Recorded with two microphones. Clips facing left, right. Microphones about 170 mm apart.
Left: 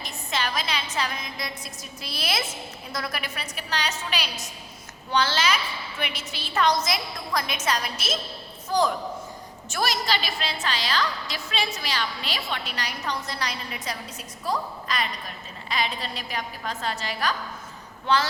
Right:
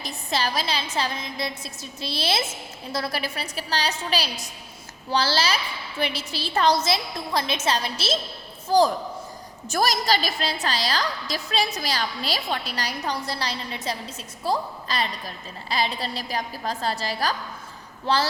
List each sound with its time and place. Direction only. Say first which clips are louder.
0.0 s a woman's voice: right 3 dB; 35° right (ahead or behind)